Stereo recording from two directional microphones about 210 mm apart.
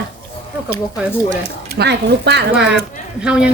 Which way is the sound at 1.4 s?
50° right (ahead or behind).